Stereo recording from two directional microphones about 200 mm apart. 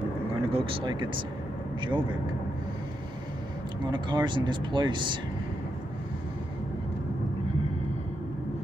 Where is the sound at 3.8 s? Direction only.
25° right (ahead or behind).